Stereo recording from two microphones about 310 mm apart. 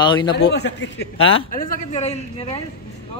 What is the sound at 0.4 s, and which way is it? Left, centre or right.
A man's voice, left.